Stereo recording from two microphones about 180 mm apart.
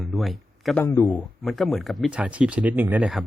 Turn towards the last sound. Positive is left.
turn(degrees=-5)  # may be behind; listen again after turning